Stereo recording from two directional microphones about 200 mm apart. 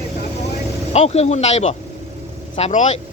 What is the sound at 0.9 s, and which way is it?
Speech, 30° left (ahead or behind).